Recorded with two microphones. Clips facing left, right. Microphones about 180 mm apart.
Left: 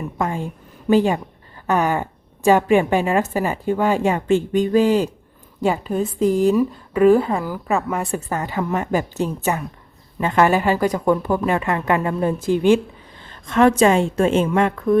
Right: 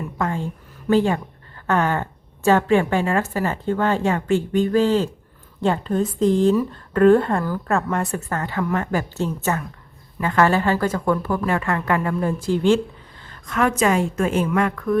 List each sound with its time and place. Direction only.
0.2 s a woman's voice: 15° left (ahead or behind)